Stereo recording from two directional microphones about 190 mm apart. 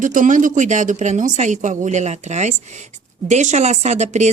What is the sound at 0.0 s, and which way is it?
A woman's voice, 40° right (ahead or behind).